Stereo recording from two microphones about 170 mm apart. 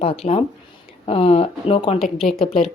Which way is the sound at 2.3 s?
Centre (ahead or behind).